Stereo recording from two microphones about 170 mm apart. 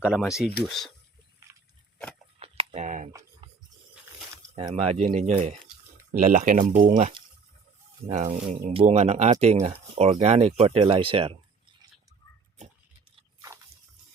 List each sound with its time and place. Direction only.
0.0 s speech: 5° right (ahead or behind)
2.4 s a sound: 40° right (ahead or behind)
4.5 s speech: 35° right (ahead or behind)
8.0 s speech: 40° right (ahead or behind)